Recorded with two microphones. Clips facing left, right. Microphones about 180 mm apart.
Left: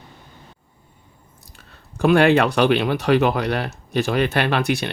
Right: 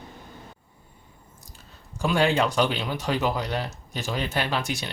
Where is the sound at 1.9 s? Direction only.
65° left (ahead or behind).